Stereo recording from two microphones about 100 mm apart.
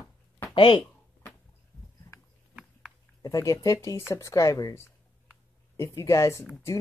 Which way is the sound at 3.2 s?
35° left (ahead or behind).